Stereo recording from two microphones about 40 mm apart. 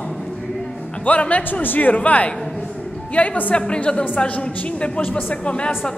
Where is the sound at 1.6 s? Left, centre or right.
Left.